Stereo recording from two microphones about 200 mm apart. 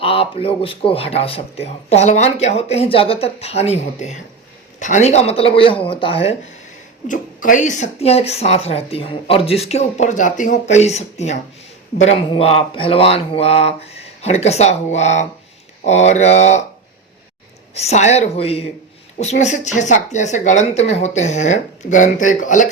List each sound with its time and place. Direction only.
0.0 s speech: 30° left (ahead or behind)
7.1 s speech: 40° left (ahead or behind)
17.7 s speech: 35° left (ahead or behind)